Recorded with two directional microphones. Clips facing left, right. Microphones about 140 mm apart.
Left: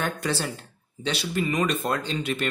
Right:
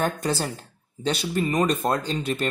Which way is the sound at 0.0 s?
40° right (ahead or behind).